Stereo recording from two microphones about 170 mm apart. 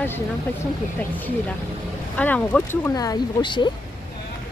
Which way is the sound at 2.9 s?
20° left (ahead or behind).